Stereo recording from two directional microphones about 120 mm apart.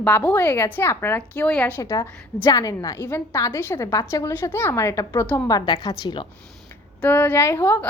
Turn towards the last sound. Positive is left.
turn(degrees=20)  # may be behind; listen again after turning